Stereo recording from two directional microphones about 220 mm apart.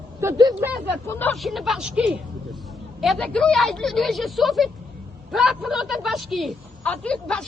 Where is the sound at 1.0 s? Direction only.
10° left (ahead or behind).